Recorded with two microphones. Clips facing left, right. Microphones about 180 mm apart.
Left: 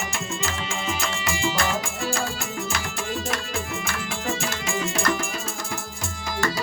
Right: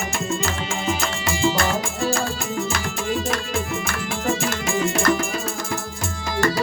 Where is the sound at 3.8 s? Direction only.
50° right (ahead or behind).